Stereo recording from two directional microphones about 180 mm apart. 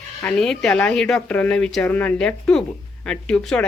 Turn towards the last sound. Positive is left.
turn(degrees=5)  # may be behind; listen again after turning